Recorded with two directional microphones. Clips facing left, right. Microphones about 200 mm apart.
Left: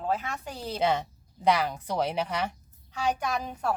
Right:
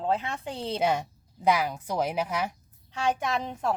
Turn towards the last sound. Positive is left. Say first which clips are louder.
# right 1 dB
turn(degrees=-25)  # may be behind; listen again after turning